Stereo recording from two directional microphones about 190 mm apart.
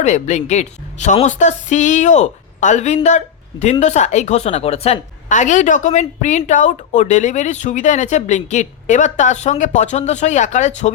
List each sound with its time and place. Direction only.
0.0 s a woman's voice: 40° left (ahead or behind)